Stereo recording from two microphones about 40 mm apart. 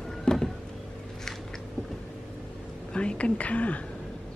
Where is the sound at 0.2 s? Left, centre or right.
Centre.